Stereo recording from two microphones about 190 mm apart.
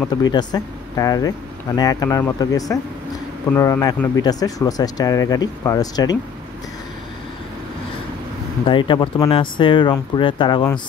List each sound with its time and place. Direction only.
0.1 s speech: 20° left (ahead or behind)
8.6 s speech: 25° left (ahead or behind)